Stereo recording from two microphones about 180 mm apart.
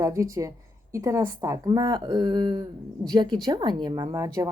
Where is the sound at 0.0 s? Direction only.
15° right (ahead or behind).